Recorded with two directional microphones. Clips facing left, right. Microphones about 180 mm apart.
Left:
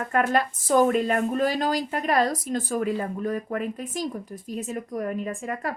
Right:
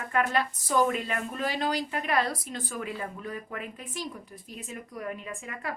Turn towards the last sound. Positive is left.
turn(degrees=45)  # may be behind; listen again after turning